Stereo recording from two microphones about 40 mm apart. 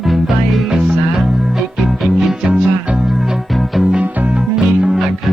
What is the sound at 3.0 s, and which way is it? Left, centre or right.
Music, centre.